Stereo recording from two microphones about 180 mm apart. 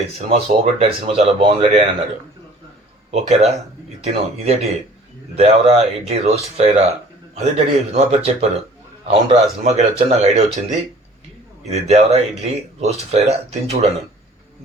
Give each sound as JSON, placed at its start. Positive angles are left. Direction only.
{"t": 0.3, "sound": "speech", "side_deg": -30}
{"t": 3.1, "sound": "speech", "side_deg": -35}
{"t": 11.7, "sound": "speech", "side_deg": -40}